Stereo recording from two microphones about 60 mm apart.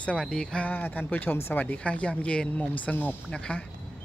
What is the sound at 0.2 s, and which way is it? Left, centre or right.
Speech, centre.